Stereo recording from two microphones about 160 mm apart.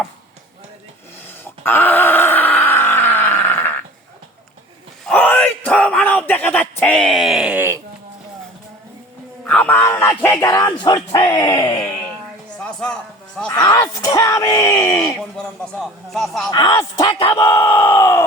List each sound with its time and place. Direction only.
1.6 s groan: 10° left (ahead or behind)
5.0 s a sound: 10° left (ahead or behind); by 7.8 s 15° right (ahead or behind)
9.5 s speech: 10° left (ahead or behind)
12.5 s a sound: 5° left (ahead or behind)
13.5 s speech: 20° left (ahead or behind)
15.2 s a man's voice: centre (ahead or behind)
16.5 s speech: 25° left (ahead or behind)